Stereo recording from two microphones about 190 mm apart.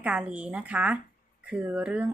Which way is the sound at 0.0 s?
5° right (ahead or behind).